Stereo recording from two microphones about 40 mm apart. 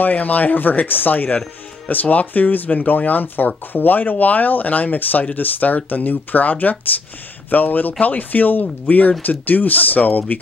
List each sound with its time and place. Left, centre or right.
0.0 s speech: left